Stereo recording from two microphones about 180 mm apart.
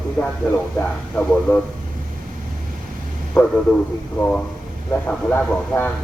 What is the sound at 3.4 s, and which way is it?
A man's voice, 15° left (ahead or behind).